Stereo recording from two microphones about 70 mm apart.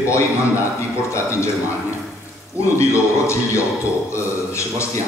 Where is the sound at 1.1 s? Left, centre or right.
Left.